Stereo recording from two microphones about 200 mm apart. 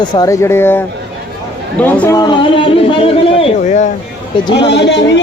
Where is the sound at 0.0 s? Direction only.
20° left (ahead or behind).